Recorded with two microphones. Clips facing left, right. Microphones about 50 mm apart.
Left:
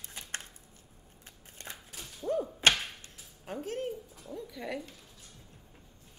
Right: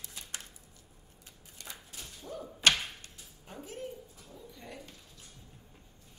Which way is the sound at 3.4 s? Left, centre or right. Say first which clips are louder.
Left 7 dB; left.